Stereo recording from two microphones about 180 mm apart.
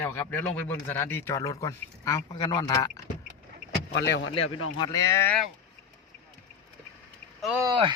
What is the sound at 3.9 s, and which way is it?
Speech, 80° left.